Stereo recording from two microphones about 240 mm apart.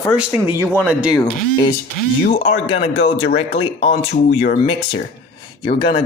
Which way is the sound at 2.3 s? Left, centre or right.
Left.